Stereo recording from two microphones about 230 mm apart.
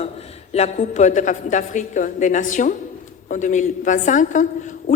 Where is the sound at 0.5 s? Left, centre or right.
Left.